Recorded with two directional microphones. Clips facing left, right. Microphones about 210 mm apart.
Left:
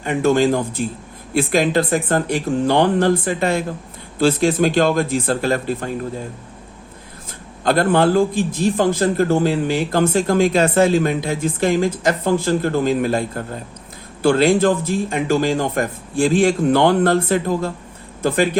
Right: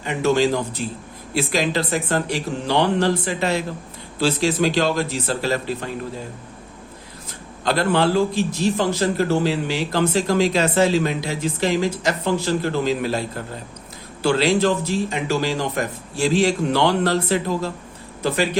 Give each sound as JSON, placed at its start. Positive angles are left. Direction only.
{"t": 0.0, "sound": "a man's voice", "side_deg": 50}
{"t": 7.6, "sound": "a man's voice", "side_deg": 50}